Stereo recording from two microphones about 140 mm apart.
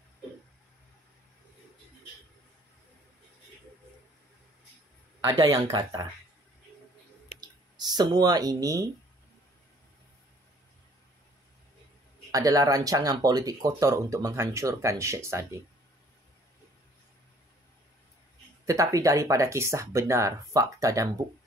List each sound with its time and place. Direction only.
5.2 s speech: 30° right (ahead or behind)
7.3 s a sound: 30° right (ahead or behind)
12.3 s speech: 25° right (ahead or behind)
18.7 s speech: 25° right (ahead or behind)